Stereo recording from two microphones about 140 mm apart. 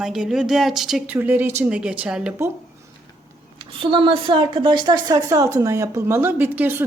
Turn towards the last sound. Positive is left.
turn(degrees=-15)  # may be behind; listen again after turning